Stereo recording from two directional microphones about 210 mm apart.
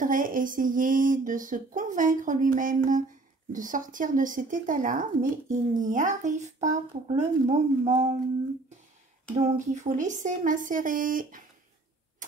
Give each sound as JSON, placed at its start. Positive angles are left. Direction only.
{"t": 0.0, "sound": "speech", "side_deg": -40}
{"t": 9.3, "sound": "speech", "side_deg": -35}